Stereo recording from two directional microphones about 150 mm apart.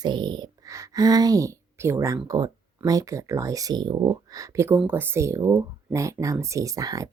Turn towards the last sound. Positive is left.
turn(degrees=-25)  # may be behind; listen again after turning